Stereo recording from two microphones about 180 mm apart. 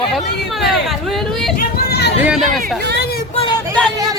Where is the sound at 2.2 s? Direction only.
Centre (ahead or behind).